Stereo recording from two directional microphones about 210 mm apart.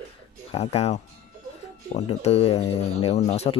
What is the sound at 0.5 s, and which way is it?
Speech, 30° left (ahead or behind).